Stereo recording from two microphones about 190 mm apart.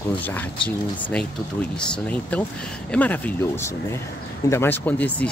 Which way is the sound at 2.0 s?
5° left (ahead or behind).